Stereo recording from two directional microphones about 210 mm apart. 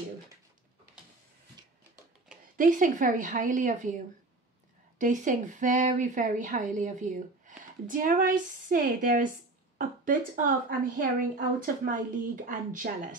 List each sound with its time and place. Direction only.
2.5 s speech: 40° right (ahead or behind)
4.9 s speech: 35° right (ahead or behind)